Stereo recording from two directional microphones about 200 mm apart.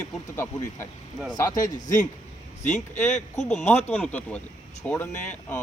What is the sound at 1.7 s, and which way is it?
Speech, 40° left (ahead or behind).